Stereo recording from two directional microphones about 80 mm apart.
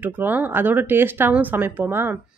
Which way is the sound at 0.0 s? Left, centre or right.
Right.